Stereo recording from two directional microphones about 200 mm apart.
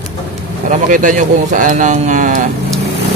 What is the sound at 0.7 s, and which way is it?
Speech, 40° right (ahead or behind).